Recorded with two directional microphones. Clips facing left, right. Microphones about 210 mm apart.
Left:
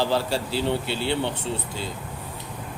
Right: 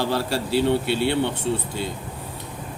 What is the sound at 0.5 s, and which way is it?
Speech, 60° right (ahead or behind).